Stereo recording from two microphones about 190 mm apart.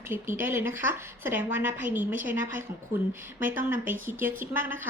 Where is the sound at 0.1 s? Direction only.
10° right (ahead or behind).